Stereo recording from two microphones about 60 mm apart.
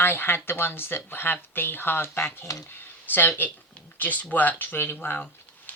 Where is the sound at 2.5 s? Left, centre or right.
Left.